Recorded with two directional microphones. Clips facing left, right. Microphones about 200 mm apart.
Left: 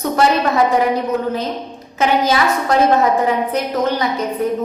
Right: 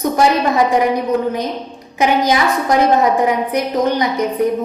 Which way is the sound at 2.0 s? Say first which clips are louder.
Right 1 dB; 15° right (ahead or behind).